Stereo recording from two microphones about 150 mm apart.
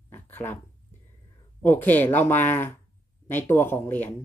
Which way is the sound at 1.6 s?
10° left (ahead or behind).